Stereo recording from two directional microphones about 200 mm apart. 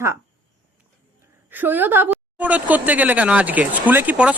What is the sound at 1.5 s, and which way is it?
Speech, 10° right (ahead or behind).